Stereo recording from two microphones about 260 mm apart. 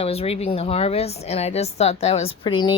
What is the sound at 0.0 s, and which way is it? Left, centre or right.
A woman's voice, left.